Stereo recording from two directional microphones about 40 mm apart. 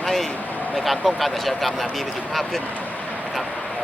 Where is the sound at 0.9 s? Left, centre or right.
Centre.